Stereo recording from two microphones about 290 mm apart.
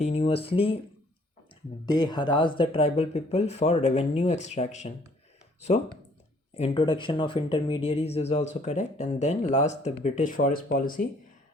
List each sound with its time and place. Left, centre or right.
0.0 s speech: left
1.9 s speech: centre
6.6 s speech: centre